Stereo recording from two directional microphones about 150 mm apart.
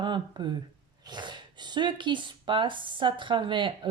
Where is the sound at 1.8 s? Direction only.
30° right (ahead or behind).